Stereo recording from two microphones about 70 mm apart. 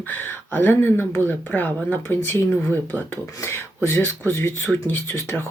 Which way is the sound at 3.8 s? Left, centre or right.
Left.